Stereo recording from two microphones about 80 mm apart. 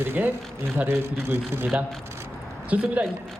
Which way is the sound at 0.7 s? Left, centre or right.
Right.